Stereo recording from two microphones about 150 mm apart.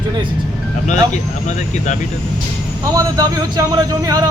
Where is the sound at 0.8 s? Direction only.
50° left (ahead or behind).